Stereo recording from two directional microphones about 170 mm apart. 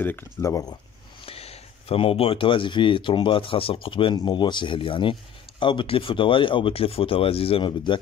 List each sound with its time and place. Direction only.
0.0 s speech: 15° left (ahead or behind)
1.2 s speech: 35° left (ahead or behind)